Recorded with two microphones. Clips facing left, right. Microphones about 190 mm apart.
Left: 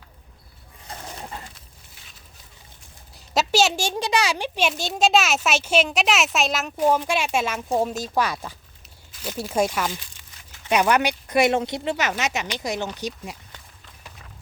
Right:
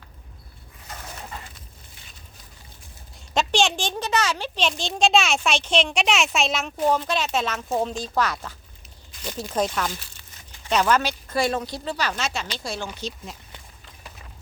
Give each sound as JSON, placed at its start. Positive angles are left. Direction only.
{"t": 3.3, "sound": "a child's voice", "side_deg": 5}